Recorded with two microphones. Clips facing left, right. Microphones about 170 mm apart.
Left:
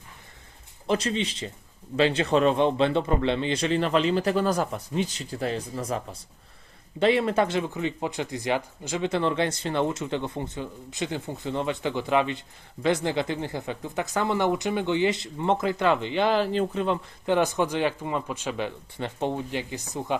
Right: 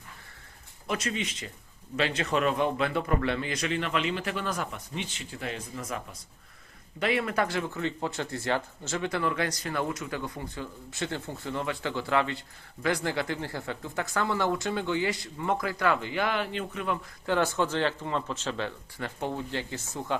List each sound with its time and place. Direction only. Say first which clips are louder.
0.9 s speech: left 6 dB; 30° left (ahead or behind)